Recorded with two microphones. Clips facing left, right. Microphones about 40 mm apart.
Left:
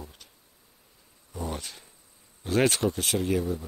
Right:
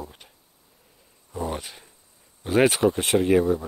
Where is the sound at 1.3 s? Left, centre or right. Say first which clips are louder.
Right 5 dB; centre.